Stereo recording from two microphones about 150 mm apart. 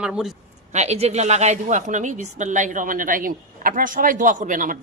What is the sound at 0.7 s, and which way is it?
A woman's voice, 45° right (ahead or behind).